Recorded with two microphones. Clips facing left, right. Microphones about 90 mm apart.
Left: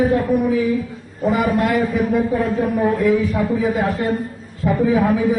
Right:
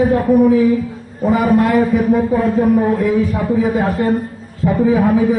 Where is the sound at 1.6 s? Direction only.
40° right (ahead or behind).